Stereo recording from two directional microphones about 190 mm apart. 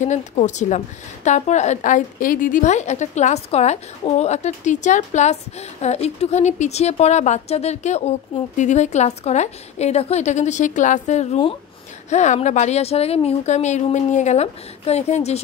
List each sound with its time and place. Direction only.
0.0 s a woman's voice: 40° left (ahead or behind)